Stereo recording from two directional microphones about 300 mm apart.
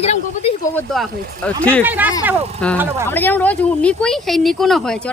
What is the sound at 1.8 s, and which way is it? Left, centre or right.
Speech, centre.